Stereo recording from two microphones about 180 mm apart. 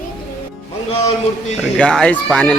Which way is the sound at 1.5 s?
5° left (ahead or behind).